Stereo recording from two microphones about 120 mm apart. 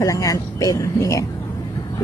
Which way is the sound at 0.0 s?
30° left (ahead or behind).